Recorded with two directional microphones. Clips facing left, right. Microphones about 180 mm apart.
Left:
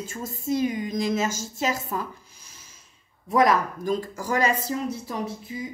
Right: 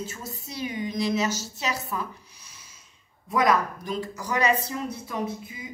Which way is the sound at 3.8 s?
45° left (ahead or behind).